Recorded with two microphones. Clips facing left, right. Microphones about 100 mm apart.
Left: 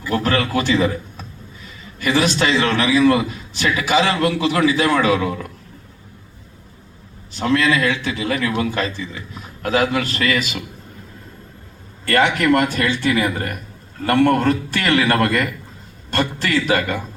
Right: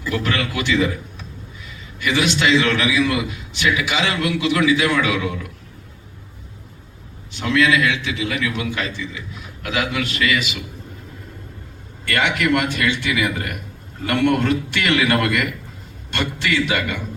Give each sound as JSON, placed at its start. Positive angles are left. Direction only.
{"t": 0.1, "sound": "a man's voice", "side_deg": 40}
{"t": 7.3, "sound": "a man's voice", "side_deg": 40}
{"t": 12.0, "sound": "a man's voice", "side_deg": 40}